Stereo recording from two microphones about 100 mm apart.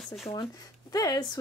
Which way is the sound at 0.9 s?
40° left (ahead or behind).